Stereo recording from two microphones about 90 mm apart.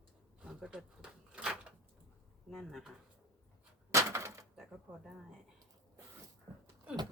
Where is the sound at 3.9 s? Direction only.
35° right (ahead or behind).